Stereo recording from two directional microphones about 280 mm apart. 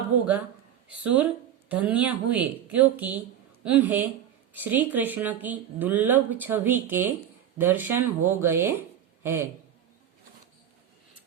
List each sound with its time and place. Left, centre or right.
0.9 s a woman's voice: centre